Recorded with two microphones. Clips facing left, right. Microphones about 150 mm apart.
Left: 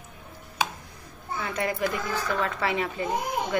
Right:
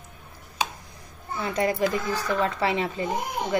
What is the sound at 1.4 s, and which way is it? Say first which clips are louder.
Speech: right 4 dB; 30° right (ahead or behind).